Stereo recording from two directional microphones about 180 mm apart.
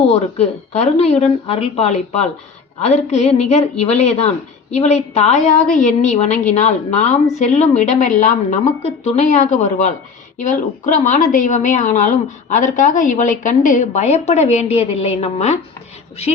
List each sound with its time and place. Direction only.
0.1 s a woman's voice: 35° left (ahead or behind)